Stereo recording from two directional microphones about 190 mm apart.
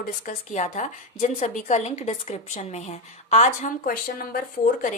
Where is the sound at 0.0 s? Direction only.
40° left (ahead or behind).